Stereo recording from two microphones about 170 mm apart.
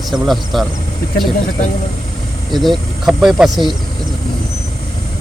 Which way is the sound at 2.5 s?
Centre (ahead or behind).